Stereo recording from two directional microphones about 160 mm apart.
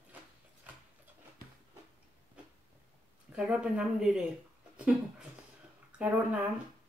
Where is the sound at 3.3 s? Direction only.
5° right (ahead or behind).